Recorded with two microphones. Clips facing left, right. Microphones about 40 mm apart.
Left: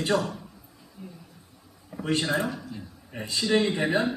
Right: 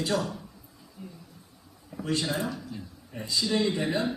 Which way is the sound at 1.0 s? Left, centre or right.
Centre.